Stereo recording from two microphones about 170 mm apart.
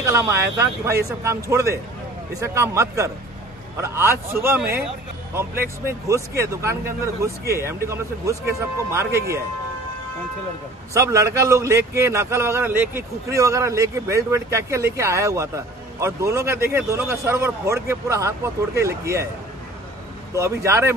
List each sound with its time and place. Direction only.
0.0 s a man's voice: 15° right (ahead or behind)
10.9 s a man's voice: 20° right (ahead or behind)
20.3 s a man's voice: 15° right (ahead or behind)